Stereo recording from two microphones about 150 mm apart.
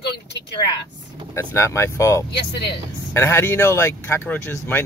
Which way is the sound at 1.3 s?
20° left (ahead or behind).